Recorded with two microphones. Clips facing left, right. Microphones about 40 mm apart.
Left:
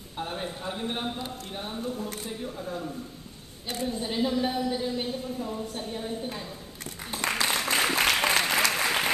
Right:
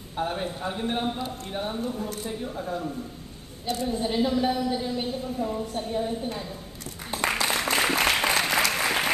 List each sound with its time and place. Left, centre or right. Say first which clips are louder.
0.2 s a man's voice: right 5 dB; centre
3.8 s a woman's voice: right 2 dB; centre
7.3 s applause: even; centre